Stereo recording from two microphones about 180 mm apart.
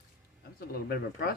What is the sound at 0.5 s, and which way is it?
Speech, 60° left (ahead or behind).